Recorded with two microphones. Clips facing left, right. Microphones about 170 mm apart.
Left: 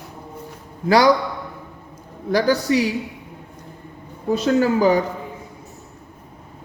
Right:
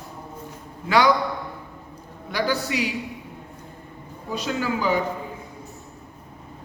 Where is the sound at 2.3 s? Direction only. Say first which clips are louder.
Left 7 dB; 40° left (ahead or behind).